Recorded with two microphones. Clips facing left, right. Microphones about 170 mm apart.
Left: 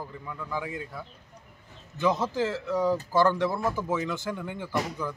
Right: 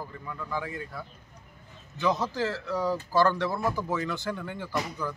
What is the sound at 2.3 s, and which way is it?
Speech, 20° left (ahead or behind).